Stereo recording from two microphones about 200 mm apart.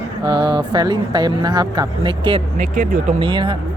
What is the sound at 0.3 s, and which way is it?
Speech, 25° right (ahead or behind).